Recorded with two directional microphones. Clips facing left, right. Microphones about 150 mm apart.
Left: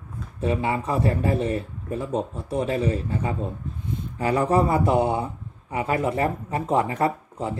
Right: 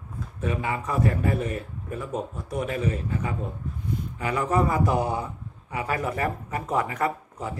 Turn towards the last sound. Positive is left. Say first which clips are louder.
# left 3 dB
turn(degrees=30)  # may be behind; listen again after turning